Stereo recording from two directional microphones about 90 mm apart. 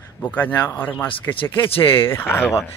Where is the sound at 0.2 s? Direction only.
20° left (ahead or behind).